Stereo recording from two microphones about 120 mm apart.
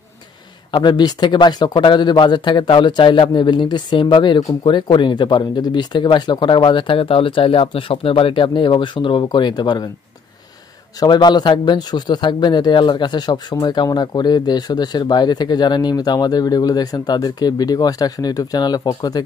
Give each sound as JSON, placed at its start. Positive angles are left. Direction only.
{"t": 0.7, "sound": "a man's voice", "side_deg": 40}
{"t": 11.0, "sound": "a man's voice", "side_deg": 35}